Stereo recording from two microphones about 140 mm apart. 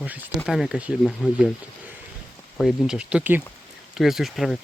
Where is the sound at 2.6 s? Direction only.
5° right (ahead or behind).